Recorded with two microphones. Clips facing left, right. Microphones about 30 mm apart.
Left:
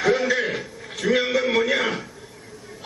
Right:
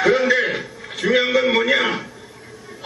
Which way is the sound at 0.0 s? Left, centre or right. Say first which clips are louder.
Right 4 dB; centre.